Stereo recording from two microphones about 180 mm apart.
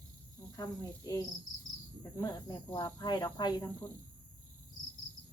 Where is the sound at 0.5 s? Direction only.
20° left (ahead or behind).